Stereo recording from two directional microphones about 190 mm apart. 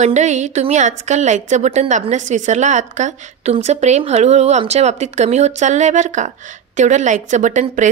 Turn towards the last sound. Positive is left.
turn(degrees=-40)  # may be behind; listen again after turning